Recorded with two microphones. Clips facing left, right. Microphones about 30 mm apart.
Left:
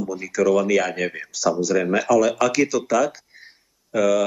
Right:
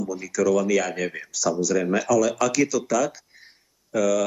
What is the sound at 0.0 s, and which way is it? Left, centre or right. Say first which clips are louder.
Speech: left 2 dB; centre.